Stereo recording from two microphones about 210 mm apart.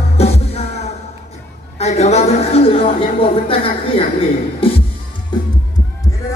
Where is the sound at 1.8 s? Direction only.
30° left (ahead or behind).